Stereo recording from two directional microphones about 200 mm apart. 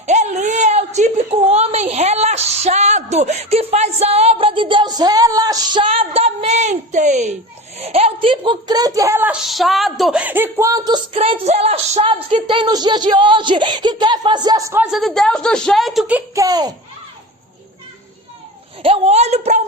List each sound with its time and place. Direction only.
0.0 s a sound: 35° right (ahead or behind)
7.8 s speech: 30° right (ahead or behind)
18.8 s a woman's voice: 30° right (ahead or behind)